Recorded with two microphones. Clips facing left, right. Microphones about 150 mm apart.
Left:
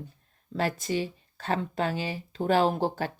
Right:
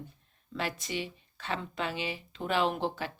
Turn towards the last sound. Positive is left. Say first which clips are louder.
# left 5 dB
turn(degrees=40)  # may be behind; listen again after turning